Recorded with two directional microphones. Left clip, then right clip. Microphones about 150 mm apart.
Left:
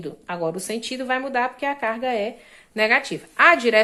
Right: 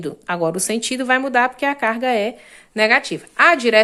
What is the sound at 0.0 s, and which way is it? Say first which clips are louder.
Speech: right 6 dB; 50° right (ahead or behind).